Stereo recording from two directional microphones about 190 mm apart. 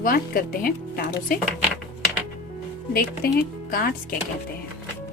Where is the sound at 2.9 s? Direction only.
50° left (ahead or behind).